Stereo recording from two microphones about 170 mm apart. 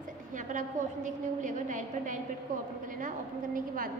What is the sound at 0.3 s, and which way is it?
A woman's voice, 50° right (ahead or behind).